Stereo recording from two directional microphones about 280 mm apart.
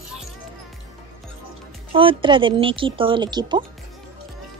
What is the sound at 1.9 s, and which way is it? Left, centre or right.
A woman's voice, centre.